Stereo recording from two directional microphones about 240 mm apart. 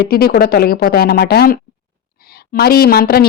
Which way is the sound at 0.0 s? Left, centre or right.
Left.